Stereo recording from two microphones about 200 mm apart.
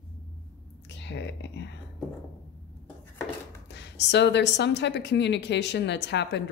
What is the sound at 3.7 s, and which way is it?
A woman's voice, 60° left (ahead or behind).